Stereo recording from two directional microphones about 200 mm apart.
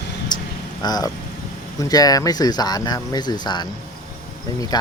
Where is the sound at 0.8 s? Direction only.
20° left (ahead or behind).